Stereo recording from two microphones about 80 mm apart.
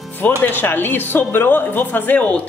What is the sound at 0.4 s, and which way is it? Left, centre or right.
Speech, left.